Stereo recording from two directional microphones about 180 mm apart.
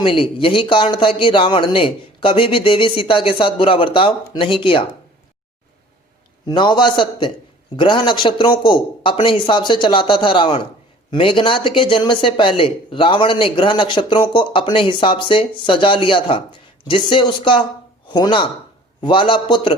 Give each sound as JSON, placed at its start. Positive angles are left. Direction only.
{"t": 0.0, "sound": "speech", "side_deg": 30}
{"t": 6.4, "sound": "speech", "side_deg": 25}